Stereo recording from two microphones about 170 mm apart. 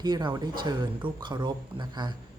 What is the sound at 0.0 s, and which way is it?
Speech, 25° right (ahead or behind).